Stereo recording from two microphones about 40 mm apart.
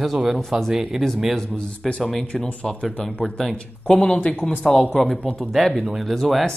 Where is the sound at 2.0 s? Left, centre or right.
Centre.